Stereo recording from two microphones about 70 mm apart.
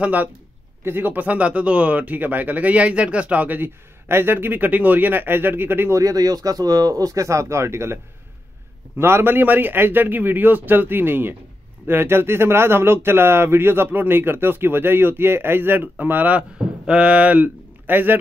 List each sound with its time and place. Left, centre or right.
0.0 s speech: right
5.9 s speech: right